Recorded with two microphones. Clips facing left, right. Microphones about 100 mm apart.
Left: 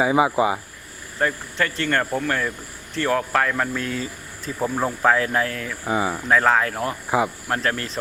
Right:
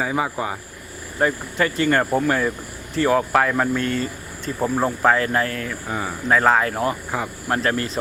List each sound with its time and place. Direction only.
0.0 s speech: 15° left (ahead or behind)
1.2 s speech: 10° right (ahead or behind)
3.8 s speech: centre (ahead or behind)
5.9 s speech: 15° left (ahead or behind)
6.2 s speech: centre (ahead or behind)